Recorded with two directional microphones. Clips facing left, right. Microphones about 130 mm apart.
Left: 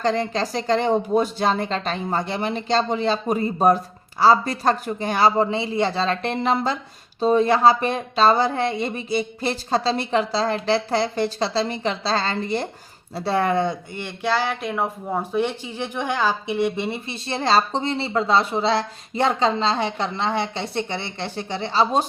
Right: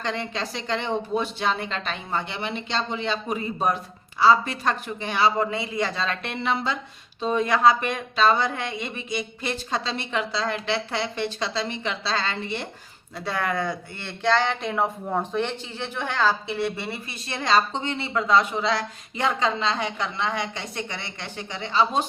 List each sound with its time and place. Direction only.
0.0 s speech: 40° left (ahead or behind)
5.5 s speech: 25° left (ahead or behind)